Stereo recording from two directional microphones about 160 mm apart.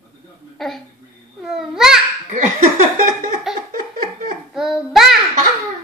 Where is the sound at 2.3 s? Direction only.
50° right (ahead or behind).